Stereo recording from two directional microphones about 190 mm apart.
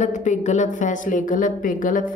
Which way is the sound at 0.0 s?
40° left (ahead or behind).